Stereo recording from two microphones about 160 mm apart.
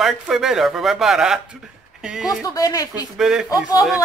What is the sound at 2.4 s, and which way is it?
Speech, 20° left (ahead or behind).